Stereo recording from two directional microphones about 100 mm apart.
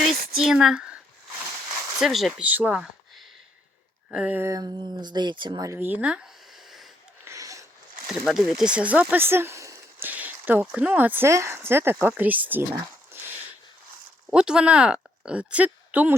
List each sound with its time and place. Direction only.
0.0 s a sound: 5° right (ahead or behind)
2.0 s speech: centre (ahead or behind)
2.4 s speech: 15° right (ahead or behind)
4.1 s speech: 10° right (ahead or behind)
4.4 s speech: 30° right (ahead or behind)
4.6 s speech: 45° right (ahead or behind); by 6.9 s centre (ahead or behind)
7.3 s a sound: 35° right (ahead or behind)
8.2 s speech: 5° right (ahead or behind); by 10.1 s 30° right (ahead or behind)
10.1 s speech: 15° right (ahead or behind)
13.1 s a sound: 20° right (ahead or behind)
14.3 s a woman's voice: 10° right (ahead or behind)